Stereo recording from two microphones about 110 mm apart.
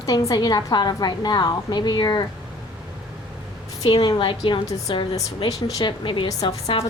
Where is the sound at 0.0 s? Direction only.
35° left (ahead or behind).